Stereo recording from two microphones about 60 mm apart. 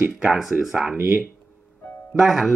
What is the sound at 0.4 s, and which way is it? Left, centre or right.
Speech, centre.